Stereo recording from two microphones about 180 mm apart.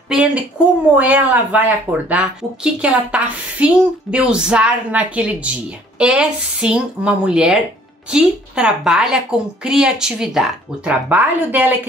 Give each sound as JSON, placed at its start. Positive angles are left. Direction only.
{"t": 0.1, "sound": "a woman's voice", "side_deg": -5}